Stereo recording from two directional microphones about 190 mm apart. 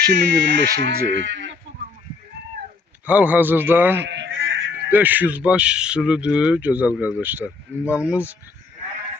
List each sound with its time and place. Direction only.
0.1 s speech: 65° right (ahead or behind)
3.1 s speech: 10° right (ahead or behind)
4.0 s honk: 70° right (ahead or behind); by 4.7 s 90° right
4.9 s speech: 10° right (ahead or behind)